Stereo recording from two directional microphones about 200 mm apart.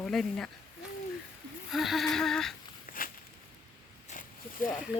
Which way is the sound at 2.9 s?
45° left (ahead or behind).